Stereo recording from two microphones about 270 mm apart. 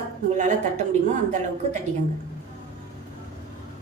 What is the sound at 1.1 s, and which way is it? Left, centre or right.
Speech, right.